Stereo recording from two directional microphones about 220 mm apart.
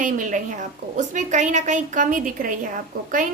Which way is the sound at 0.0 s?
35° right (ahead or behind).